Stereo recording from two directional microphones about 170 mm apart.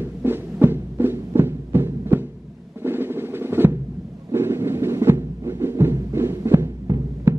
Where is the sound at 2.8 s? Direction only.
15° right (ahead or behind).